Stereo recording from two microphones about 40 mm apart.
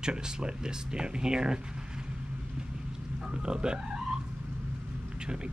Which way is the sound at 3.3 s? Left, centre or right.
Right.